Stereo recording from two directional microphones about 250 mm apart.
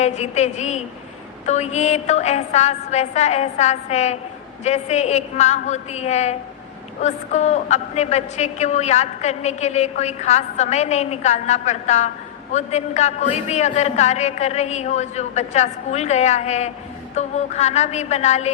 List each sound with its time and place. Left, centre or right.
0.0 s a woman's voice: left